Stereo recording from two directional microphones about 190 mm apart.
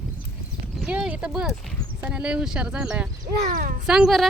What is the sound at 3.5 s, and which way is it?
Speech, 45° right (ahead or behind).